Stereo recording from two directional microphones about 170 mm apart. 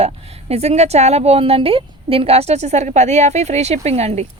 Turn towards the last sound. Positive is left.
turn(degrees=-40)  # may be behind; listen again after turning